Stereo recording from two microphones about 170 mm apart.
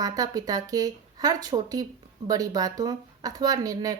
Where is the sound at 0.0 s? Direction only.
20° right (ahead or behind).